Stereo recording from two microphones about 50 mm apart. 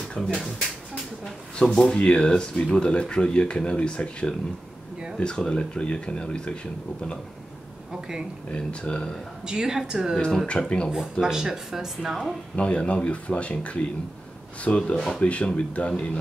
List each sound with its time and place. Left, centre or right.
0.1 s speech: left
1.6 s speech: centre
8.5 s speech: centre
9.5 s speech: centre
10.1 s speech: centre
10.9 s speech: centre
12.5 s speech: left
15.0 s speech: centre
15.2 s speech: left